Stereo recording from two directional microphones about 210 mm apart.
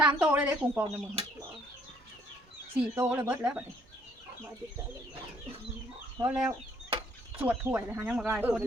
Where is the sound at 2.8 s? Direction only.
10° right (ahead or behind).